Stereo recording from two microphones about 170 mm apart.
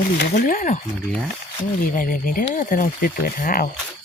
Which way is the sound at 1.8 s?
55° left (ahead or behind).